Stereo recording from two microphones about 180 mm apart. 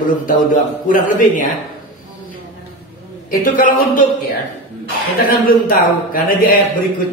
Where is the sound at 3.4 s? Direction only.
50° left (ahead or behind).